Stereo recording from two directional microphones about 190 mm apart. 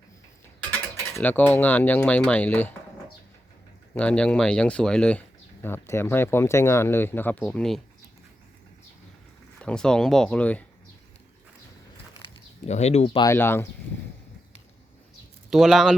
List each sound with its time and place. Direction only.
1.1 s speech: 10° left (ahead or behind)
3.9 s speech: 5° left (ahead or behind)
9.6 s speech: 5° left (ahead or behind)
12.6 s speech: 35° left (ahead or behind)
13.2 s speech: 10° left (ahead or behind)
15.4 s speech: centre (ahead or behind)